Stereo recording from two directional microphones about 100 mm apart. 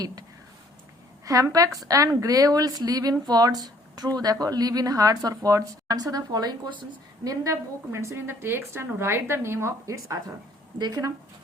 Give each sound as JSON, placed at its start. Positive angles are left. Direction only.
{"t": 1.2, "sound": "speech", "side_deg": -35}
{"t": 7.4, "sound": "a woman's voice", "side_deg": -30}
{"t": 10.8, "sound": "speech", "side_deg": -45}